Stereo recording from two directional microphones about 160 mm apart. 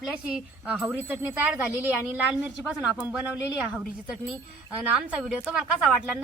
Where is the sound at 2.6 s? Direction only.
5° right (ahead or behind).